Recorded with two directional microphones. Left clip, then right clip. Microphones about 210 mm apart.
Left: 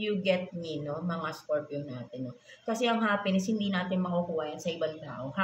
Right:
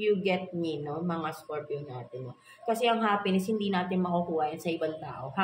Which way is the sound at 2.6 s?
35° right (ahead or behind).